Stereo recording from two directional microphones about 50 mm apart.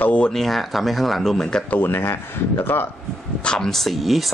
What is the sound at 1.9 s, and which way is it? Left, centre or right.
Speech, left.